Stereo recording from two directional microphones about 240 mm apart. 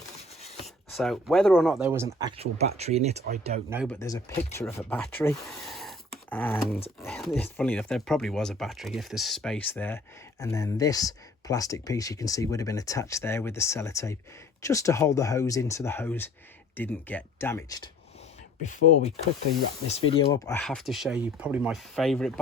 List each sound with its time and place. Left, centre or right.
0.6 s speech: centre
1.8 s speech: centre; by 3.6 s right
3.8 s speech: centre
19.9 s speech: left; by 22.3 s centre